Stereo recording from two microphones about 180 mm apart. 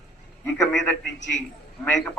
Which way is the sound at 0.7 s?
10° left (ahead or behind).